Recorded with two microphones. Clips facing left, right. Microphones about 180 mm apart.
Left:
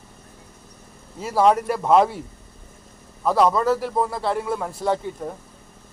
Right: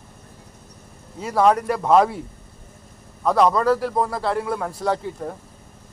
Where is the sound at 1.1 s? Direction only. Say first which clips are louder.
Even; 5° left (ahead or behind).